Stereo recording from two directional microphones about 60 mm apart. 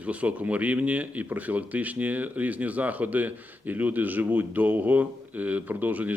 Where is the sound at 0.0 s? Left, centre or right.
Right.